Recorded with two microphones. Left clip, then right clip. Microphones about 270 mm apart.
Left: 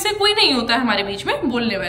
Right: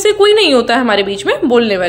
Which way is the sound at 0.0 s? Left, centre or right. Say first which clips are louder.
Right 7 dB; centre.